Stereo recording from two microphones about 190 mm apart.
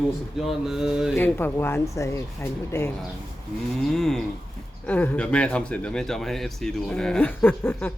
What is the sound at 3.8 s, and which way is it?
Speech, centre (ahead or behind).